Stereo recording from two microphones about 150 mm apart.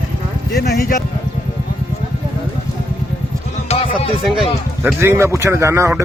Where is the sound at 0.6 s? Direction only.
90° left.